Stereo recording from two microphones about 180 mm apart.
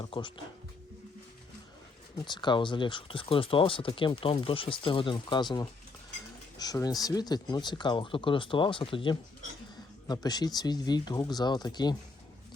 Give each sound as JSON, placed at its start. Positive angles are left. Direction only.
{"t": 0.0, "sound": "speech", "side_deg": 25}
{"t": 2.1, "sound": "speech", "side_deg": 25}